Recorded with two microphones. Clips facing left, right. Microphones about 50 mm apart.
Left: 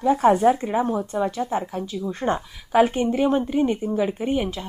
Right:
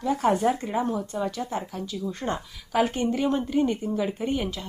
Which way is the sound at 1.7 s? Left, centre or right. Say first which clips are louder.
Left 4 dB; left.